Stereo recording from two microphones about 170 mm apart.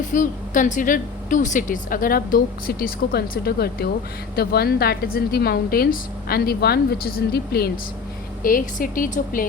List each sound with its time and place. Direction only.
0.1 s speech: 50° left (ahead or behind); by 7.7 s 65° left (ahead or behind)
8.4 s speech: 55° left (ahead or behind)